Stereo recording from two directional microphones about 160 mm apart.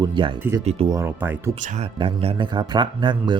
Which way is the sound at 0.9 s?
15° right (ahead or behind).